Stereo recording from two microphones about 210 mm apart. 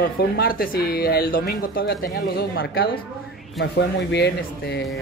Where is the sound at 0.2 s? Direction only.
45° left (ahead or behind).